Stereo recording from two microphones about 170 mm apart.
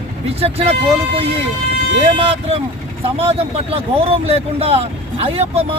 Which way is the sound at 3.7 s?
35° right (ahead or behind).